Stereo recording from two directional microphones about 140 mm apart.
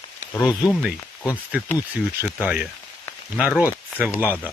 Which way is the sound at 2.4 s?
5° right (ahead or behind).